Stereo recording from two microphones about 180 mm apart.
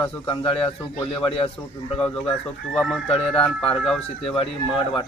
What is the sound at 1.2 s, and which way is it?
Speech, 30° left (ahead or behind).